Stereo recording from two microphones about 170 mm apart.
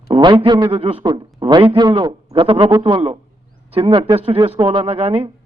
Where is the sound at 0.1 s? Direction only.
30° right (ahead or behind).